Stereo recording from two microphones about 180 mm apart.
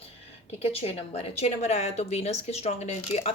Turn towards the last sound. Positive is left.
turn(degrees=35)  # may be behind; listen again after turning